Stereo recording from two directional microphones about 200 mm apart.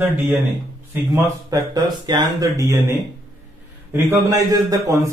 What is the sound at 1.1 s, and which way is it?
A man's voice, 20° right (ahead or behind).